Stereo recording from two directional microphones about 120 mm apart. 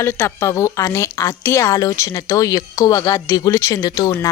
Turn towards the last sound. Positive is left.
turn(degrees=30)  # may be behind; listen again after turning